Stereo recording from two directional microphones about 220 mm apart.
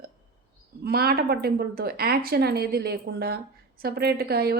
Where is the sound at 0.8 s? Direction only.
45° right (ahead or behind).